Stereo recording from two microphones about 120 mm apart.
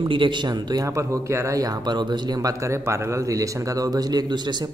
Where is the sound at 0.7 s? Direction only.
25° right (ahead or behind).